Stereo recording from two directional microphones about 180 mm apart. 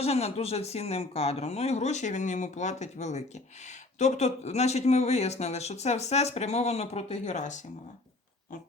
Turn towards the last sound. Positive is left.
turn(degrees=40)  # may be behind; listen again after turning